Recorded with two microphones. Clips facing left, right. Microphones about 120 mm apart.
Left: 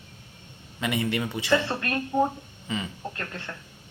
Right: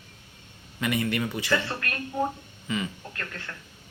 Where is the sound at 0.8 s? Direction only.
25° left (ahead or behind).